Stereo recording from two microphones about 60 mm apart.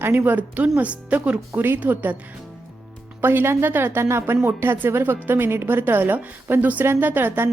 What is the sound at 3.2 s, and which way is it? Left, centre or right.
A woman's voice, right.